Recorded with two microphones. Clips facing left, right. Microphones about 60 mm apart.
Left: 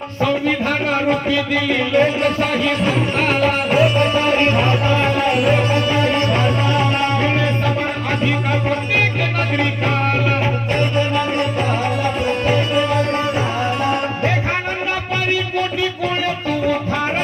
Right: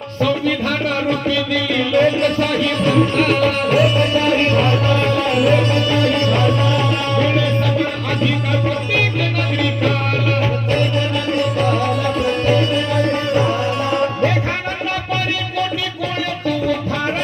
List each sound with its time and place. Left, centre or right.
1.9 s music: left
10.8 s music: left
12.5 s music: centre